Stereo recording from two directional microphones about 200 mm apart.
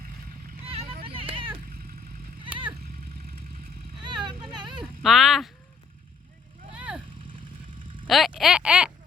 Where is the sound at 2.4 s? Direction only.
25° right (ahead or behind).